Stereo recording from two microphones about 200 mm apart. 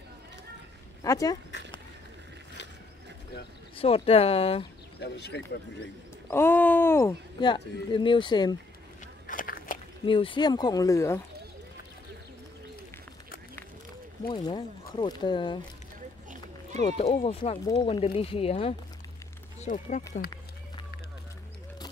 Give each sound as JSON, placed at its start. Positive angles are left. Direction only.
{"t": 1.0, "sound": "speech", "side_deg": 15}
{"t": 3.7, "sound": "speech", "side_deg": 30}
{"t": 5.0, "sound": "speech", "side_deg": 55}
{"t": 6.2, "sound": "speech", "side_deg": 10}
{"t": 9.0, "sound": "a sound", "side_deg": 45}
{"t": 10.0, "sound": "speech", "side_deg": 25}
{"t": 14.2, "sound": "speech", "side_deg": 25}
{"t": 17.0, "sound": "speech", "side_deg": 30}